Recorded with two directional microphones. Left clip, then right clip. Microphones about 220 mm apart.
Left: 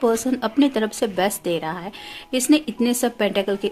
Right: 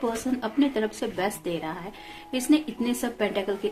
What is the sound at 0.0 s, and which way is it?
Speech, 50° left (ahead or behind).